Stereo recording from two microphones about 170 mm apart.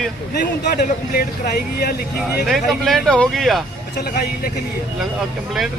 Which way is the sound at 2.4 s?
Centre (ahead or behind).